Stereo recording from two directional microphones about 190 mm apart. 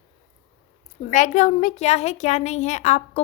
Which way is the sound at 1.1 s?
40° left (ahead or behind).